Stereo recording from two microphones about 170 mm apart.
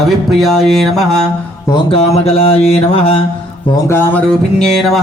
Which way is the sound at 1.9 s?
35° left (ahead or behind).